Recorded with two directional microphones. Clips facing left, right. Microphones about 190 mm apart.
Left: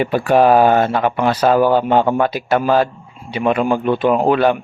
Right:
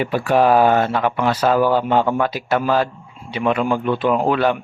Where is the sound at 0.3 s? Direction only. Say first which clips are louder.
Left 3 dB; 50° left (ahead or behind).